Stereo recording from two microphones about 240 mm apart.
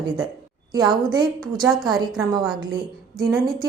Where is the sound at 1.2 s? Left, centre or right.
Centre.